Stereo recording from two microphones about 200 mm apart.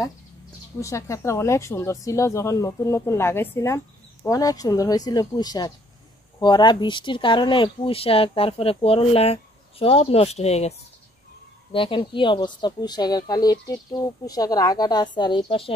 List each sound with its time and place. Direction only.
0.7 s speech: 15° left (ahead or behind); by 10.7 s 30° left (ahead or behind)
11.7 s speech: 25° left (ahead or behind)